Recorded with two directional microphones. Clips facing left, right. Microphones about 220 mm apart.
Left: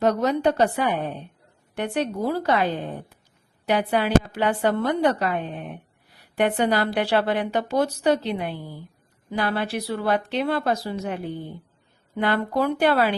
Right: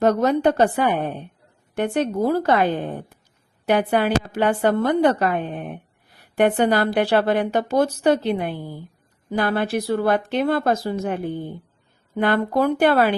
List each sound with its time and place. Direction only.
0.0 s a woman's voice: 50° right (ahead or behind)